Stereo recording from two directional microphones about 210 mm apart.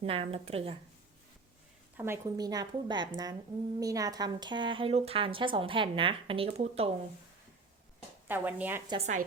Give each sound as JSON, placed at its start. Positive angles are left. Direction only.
{"t": 0.0, "sound": "speech", "side_deg": -25}
{"t": 2.0, "sound": "a woman's voice", "side_deg": -15}
{"t": 8.3, "sound": "a woman's voice", "side_deg": -10}
{"t": 8.9, "sound": "a woman's voice", "side_deg": -30}